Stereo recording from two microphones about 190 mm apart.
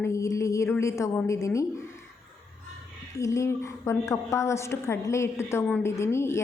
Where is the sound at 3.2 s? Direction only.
15° left (ahead or behind).